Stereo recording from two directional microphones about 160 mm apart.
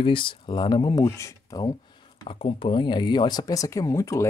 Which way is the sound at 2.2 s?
35° left (ahead or behind).